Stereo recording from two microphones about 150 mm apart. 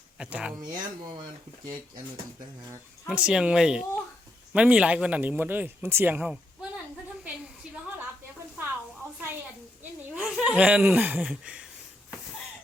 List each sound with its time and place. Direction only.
0.2 s speech: 10° right (ahead or behind)
0.7 s speech: 25° right (ahead or behind)
3.1 s speech: 5° right (ahead or behind)
10.2 s speech: 5° right (ahead or behind)